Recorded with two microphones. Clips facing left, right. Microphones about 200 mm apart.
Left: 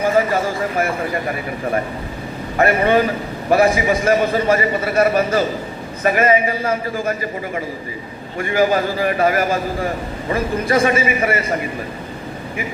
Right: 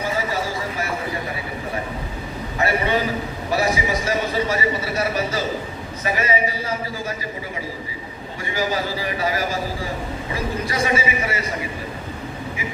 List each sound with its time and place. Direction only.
0.0 s a sound: 55° left (ahead or behind)
2.6 s a man's voice: 55° left (ahead or behind)
8.4 s a man's voice: 55° left (ahead or behind)